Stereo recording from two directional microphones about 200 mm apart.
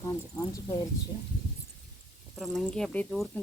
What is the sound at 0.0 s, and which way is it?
Speech, 15° left (ahead or behind).